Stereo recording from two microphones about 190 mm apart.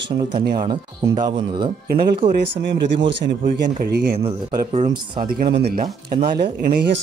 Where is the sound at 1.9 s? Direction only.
55° right (ahead or behind).